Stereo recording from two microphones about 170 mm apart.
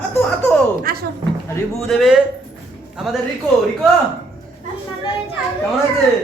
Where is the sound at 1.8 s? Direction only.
Centre (ahead or behind).